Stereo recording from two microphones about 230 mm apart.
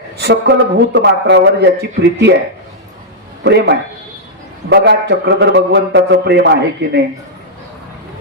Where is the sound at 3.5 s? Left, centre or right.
Right.